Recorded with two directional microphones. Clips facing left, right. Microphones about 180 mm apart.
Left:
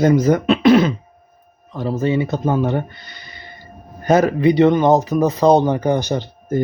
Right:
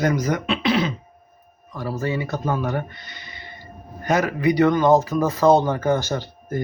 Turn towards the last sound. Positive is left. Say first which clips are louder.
# left 6 dB
turn(degrees=20)  # may be behind; listen again after turning